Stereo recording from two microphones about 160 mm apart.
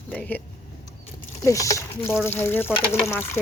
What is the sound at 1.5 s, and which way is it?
Speech, 20° left (ahead or behind).